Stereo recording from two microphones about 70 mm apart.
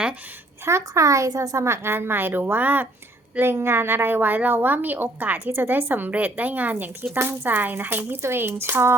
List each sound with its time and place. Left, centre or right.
0.6 s a woman's voice: right